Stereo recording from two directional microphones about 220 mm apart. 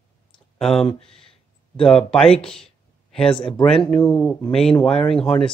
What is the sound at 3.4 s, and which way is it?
Speech, 20° left (ahead or behind).